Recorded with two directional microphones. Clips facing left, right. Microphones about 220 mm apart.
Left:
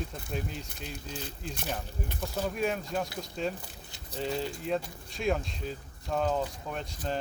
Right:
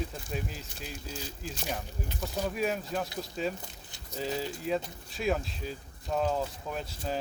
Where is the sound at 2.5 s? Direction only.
Centre (ahead or behind).